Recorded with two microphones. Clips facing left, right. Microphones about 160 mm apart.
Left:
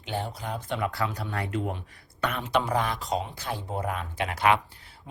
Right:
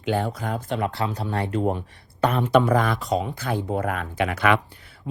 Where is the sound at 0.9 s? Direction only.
25° right (ahead or behind).